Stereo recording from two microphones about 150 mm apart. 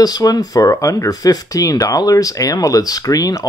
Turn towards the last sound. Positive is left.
turn(degrees=25)  # may be behind; listen again after turning